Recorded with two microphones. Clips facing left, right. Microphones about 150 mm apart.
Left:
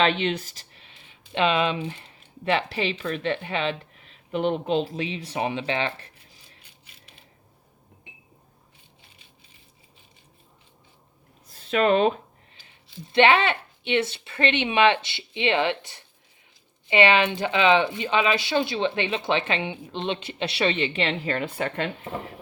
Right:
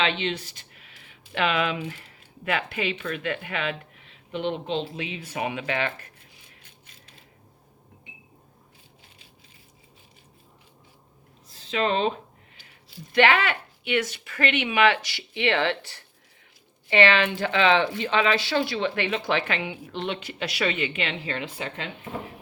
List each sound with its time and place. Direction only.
0.0 s speech: 45° left (ahead or behind)
4.9 s speech: 30° left (ahead or behind)
11.5 s speech: 55° left (ahead or behind)
12.6 s speech: 25° left (ahead or behind); by 21.8 s 50° left (ahead or behind)